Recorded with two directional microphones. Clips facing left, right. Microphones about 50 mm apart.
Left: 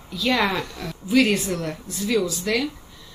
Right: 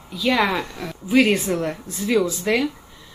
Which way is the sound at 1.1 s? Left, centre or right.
Right.